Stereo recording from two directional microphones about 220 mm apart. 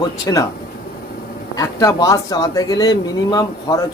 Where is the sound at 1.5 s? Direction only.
15° left (ahead or behind).